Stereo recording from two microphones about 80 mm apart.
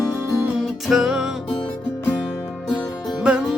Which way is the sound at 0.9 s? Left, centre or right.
Centre.